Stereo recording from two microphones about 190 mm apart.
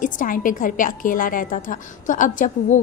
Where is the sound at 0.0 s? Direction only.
45° left (ahead or behind).